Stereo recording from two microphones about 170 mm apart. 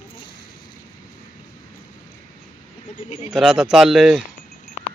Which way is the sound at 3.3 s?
5° right (ahead or behind).